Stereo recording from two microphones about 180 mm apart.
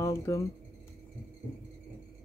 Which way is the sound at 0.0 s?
15° left (ahead or behind).